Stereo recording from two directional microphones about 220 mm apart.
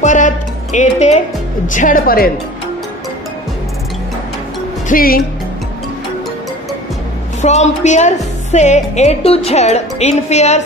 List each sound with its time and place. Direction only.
0.0 s music: 35° left (ahead or behind)
1.7 s a woman's voice: 35° left (ahead or behind)
4.8 s speech: 40° left (ahead or behind)
7.4 s a woman's voice: 30° left (ahead or behind)